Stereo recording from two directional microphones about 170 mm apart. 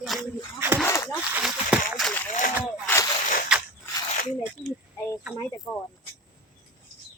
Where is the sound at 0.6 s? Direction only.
15° right (ahead or behind).